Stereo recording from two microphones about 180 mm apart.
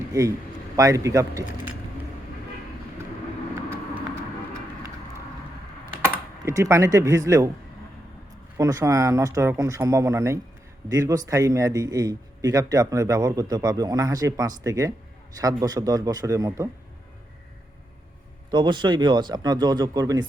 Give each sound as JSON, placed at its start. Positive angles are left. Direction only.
{"t": 0.1, "sound": "a man's voice", "side_deg": -20}
{"t": 6.0, "sound": "speech", "side_deg": -15}
{"t": 8.5, "sound": "a man's voice", "side_deg": -20}
{"t": 18.5, "sound": "a man's voice", "side_deg": -25}